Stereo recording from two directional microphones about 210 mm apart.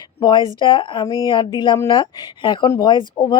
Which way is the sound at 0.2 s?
20° left (ahead or behind).